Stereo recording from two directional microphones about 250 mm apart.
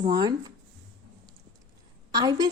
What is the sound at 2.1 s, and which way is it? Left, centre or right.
Speech, centre.